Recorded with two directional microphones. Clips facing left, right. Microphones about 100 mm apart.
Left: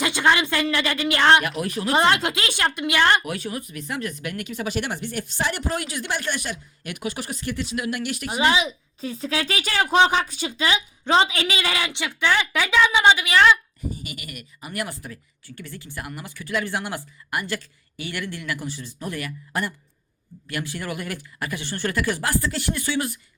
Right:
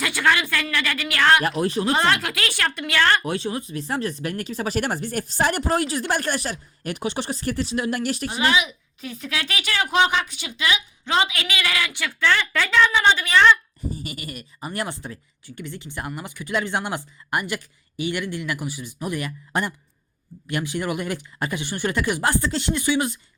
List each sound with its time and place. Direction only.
0.0 s speech: 20° left (ahead or behind)
1.5 s speech: 30° right (ahead or behind)
1.9 s speech: 20° left (ahead or behind)
3.2 s speech: 25° right (ahead or behind)
8.3 s speech: 30° left (ahead or behind); by 13.6 s 5° left (ahead or behind)
13.9 s speech: 35° right (ahead or behind)